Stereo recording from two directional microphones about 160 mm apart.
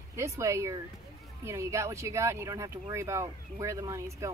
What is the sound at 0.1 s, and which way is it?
Speech, 20° right (ahead or behind).